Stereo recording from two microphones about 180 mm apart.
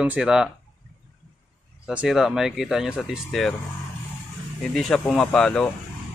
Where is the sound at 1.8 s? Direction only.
5° right (ahead or behind).